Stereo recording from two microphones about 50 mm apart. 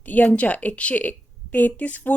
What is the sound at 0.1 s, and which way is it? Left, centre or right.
Speech, left.